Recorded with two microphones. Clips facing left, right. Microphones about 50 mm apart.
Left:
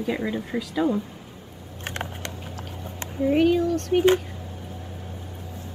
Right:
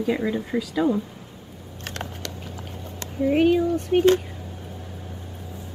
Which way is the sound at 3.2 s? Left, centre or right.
Centre.